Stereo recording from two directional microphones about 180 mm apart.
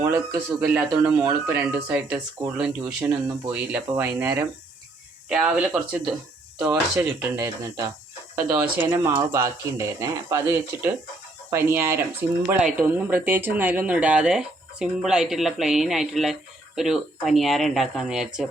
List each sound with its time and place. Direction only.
0.0 s speech: 15° right (ahead or behind)
7.3 s speech: 15° right (ahead or behind)